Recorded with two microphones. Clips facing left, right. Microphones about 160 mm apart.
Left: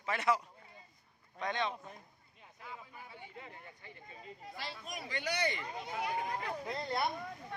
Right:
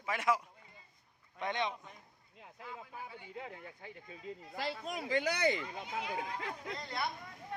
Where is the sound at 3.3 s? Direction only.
90° right.